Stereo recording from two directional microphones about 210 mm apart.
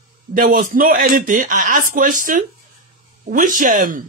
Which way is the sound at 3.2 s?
40° right (ahead or behind).